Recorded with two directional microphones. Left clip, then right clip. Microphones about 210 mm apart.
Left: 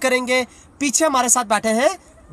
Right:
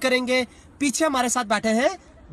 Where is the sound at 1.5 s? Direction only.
30° left (ahead or behind).